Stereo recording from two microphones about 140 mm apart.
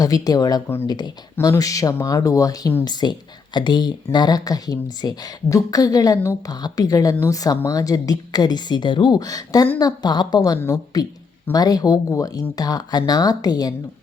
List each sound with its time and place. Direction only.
0.0 s speech: 25° left (ahead or behind)